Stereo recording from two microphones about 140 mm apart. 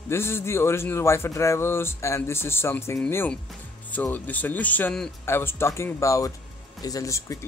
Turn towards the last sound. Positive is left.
turn(degrees=20)  # may be behind; listen again after turning